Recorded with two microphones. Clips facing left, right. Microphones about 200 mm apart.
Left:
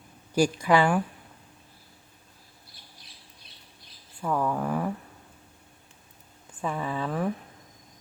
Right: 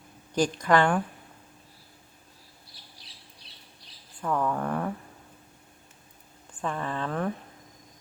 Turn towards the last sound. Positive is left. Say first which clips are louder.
# left 1 dB
turn(degrees=5)  # may be behind; listen again after turning